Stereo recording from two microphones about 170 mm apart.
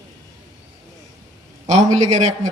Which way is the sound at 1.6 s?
45° right (ahead or behind).